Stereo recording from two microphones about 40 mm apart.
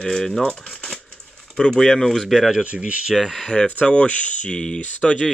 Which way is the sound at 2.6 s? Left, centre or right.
Right.